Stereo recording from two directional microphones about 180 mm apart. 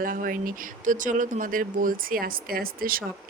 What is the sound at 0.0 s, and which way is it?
Speech, 50° right (ahead or behind).